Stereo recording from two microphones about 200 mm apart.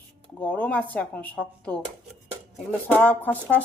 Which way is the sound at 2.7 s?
10° left (ahead or behind).